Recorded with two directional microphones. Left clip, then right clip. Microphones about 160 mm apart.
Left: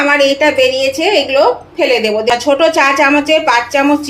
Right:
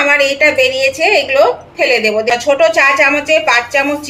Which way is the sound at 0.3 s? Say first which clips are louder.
Even; 35° left (ahead or behind).